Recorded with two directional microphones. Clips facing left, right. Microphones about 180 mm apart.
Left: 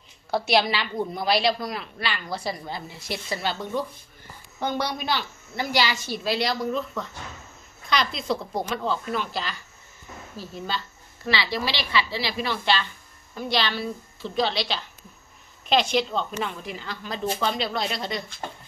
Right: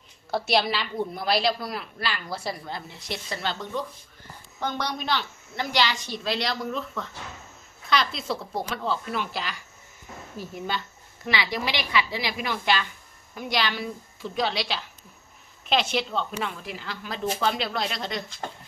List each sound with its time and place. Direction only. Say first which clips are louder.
0.3 s a woman's voice: left 2 dB; centre (ahead or behind)